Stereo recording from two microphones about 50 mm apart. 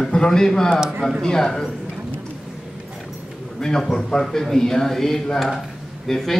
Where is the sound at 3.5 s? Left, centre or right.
Centre.